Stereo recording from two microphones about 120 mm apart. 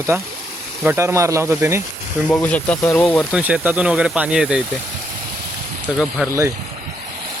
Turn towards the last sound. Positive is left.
turn(degrees=-25)  # may be behind; listen again after turning